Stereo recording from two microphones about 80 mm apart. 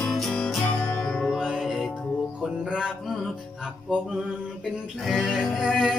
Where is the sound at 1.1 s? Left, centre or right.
Centre.